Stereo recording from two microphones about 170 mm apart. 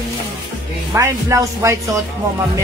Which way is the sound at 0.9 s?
20° right (ahead or behind).